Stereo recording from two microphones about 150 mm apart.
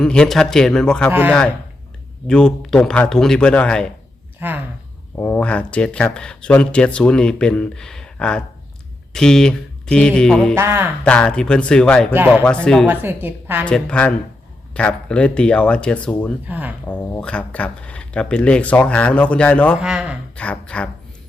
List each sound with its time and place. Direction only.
0.0 s a man's voice: 5° left (ahead or behind)
2.2 s a man's voice: 5° left (ahead or behind)
4.4 s a sound: 10° right (ahead or behind)
5.1 s a man's voice: 10° left (ahead or behind)
10.5 s a woman's voice: 15° right (ahead or behind)
11.0 s a man's voice: 5° left (ahead or behind)
12.1 s a woman's voice: 10° right (ahead or behind)
12.6 s a man's voice: 5° left (ahead or behind)
12.9 s a woman's voice: 15° right (ahead or behind)
13.7 s speech: 5° left (ahead or behind)
16.5 s a woman's voice: 10° right (ahead or behind)
16.9 s speech: 5° left (ahead or behind)
19.8 s a man's voice: 5° right (ahead or behind)
20.3 s speech: 10° left (ahead or behind)